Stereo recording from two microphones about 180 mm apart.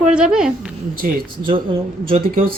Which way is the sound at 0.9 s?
50° right (ahead or behind).